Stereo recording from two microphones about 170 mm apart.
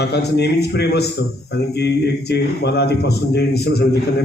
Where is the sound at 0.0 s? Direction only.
80° left.